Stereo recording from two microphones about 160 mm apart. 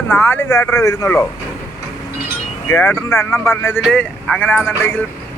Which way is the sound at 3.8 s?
5° left (ahead or behind).